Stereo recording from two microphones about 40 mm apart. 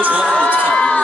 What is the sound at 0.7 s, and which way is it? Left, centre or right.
Crowd, centre.